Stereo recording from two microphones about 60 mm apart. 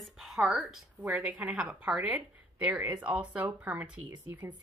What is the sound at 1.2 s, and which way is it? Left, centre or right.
A woman's voice, right.